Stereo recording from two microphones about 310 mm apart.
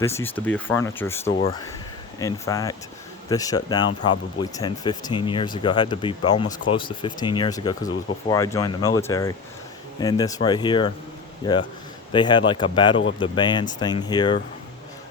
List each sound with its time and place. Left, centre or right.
0.0 s speech: centre
1.3 s speech: centre
12.1 s speech: centre